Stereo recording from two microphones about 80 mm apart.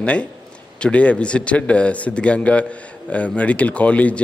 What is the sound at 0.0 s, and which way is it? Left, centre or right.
A man's voice, centre.